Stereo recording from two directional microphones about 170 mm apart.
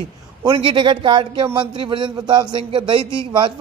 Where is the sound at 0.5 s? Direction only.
30° right (ahead or behind).